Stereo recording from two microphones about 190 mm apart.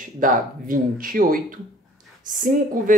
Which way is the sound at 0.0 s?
45° right (ahead or behind).